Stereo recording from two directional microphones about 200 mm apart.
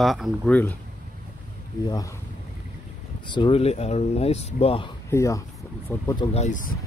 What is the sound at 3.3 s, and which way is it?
Speech, 25° left (ahead or behind).